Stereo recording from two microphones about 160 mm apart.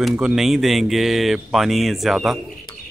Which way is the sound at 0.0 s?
5° right (ahead or behind).